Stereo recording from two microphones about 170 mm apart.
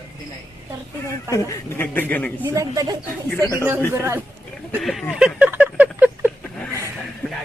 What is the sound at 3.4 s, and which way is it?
Speech, 20° left (ahead or behind).